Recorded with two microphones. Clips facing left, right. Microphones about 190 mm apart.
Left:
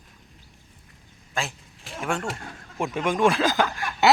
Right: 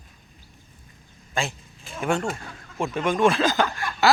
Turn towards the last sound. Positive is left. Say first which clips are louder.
# even
turn(degrees=20)  # may be behind; listen again after turning